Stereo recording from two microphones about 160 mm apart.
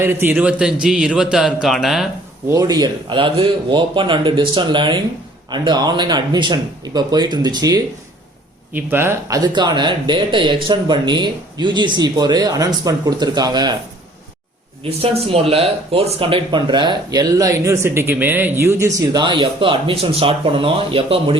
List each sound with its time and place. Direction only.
0.0 s a man's voice: 15° right (ahead or behind)
2.5 s speech: 20° right (ahead or behind)
8.7 s speech: 15° right (ahead or behind)
14.8 s speech: 40° right (ahead or behind)